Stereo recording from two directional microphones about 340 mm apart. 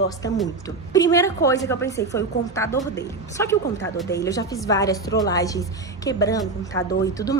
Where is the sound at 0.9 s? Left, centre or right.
Centre.